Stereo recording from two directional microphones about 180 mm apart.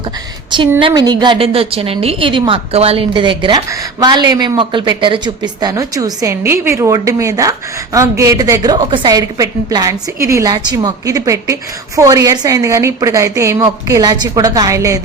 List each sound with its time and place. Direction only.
0.8 s a woman's voice: 25° right (ahead or behind)